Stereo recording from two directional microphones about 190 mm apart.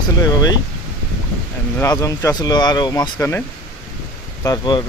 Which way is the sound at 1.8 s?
15° left (ahead or behind).